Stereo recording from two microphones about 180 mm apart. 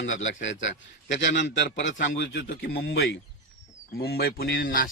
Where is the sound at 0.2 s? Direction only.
90° left.